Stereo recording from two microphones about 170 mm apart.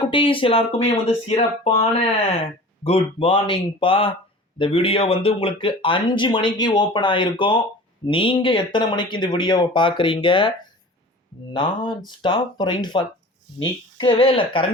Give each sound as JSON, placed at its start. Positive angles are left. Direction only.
{"t": 0.0, "sound": "speech", "side_deg": 30}
{"t": 11.5, "sound": "speech", "side_deg": 30}